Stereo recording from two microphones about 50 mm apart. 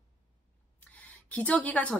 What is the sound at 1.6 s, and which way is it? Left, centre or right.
Speech, left.